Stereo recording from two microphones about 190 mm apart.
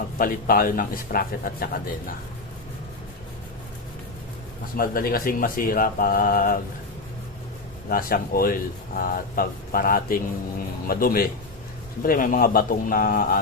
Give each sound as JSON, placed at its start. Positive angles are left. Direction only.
{"t": 0.2, "sound": "speech", "side_deg": 50}
{"t": 4.8, "sound": "speech", "side_deg": 50}
{"t": 7.9, "sound": "speech", "side_deg": 50}